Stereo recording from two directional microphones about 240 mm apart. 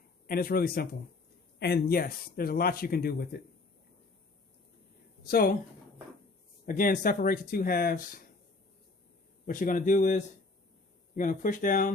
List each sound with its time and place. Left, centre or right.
0.3 s speech: left
5.3 s speech: left
6.7 s speech: left
9.5 s speech: left